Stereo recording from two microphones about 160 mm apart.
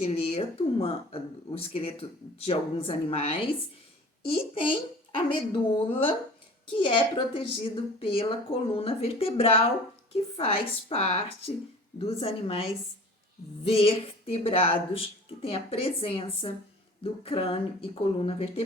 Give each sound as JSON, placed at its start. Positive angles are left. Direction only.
{"t": 0.0, "sound": "a woman's voice", "side_deg": 40}
{"t": 13.7, "sound": "a woman's voice", "side_deg": 35}